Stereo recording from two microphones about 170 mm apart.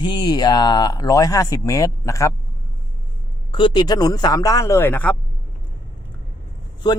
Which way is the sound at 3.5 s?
30° left (ahead or behind).